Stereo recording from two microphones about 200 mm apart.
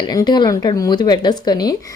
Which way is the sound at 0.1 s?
20° left (ahead or behind).